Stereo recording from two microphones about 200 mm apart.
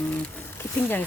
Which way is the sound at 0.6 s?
10° left (ahead or behind).